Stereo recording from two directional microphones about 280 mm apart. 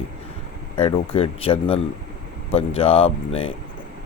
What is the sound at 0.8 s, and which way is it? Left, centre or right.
Speech, centre.